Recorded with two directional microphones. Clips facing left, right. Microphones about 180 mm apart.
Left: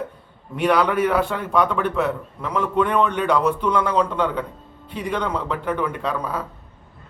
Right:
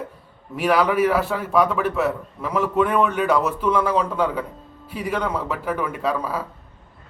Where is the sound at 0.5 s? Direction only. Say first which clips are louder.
Even; 5° right (ahead or behind).